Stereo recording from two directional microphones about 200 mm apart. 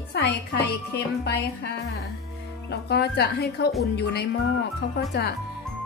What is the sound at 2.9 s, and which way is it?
Speech, 55° left (ahead or behind).